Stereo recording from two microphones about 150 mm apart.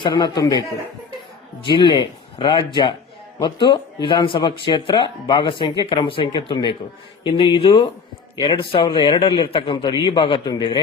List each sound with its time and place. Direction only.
0.0 s a man's voice: 30° left (ahead or behind)
1.6 s speech: 30° left (ahead or behind)